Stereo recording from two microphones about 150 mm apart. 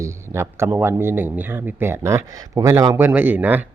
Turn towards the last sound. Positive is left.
turn(degrees=-10)  # may be behind; listen again after turning